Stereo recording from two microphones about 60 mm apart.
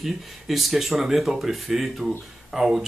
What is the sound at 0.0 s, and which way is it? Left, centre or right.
Speech, centre.